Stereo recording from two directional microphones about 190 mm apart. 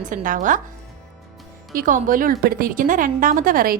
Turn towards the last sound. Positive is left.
turn(degrees=-50)  # may be behind; listen again after turning